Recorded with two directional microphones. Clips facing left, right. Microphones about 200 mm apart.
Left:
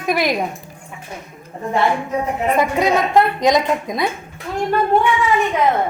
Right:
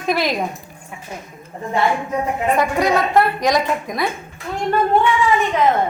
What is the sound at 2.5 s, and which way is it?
A woman's voice, 20° left (ahead or behind).